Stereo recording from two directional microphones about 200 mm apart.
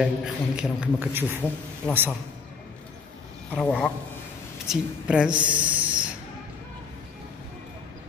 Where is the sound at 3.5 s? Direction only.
5° left (ahead or behind).